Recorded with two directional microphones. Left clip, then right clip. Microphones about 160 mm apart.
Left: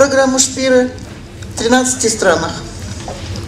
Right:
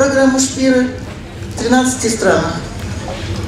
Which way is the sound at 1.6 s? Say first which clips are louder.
Left 1 dB; 25° left (ahead or behind).